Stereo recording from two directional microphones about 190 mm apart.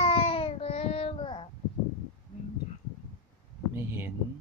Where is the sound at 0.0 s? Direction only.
30° left (ahead or behind).